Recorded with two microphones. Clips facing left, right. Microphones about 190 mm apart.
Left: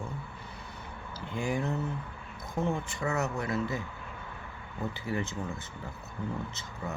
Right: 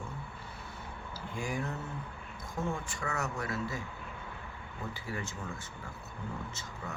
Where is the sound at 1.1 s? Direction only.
20° left (ahead or behind).